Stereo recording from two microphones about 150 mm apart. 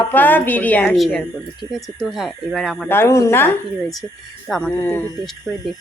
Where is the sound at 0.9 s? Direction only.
Centre (ahead or behind).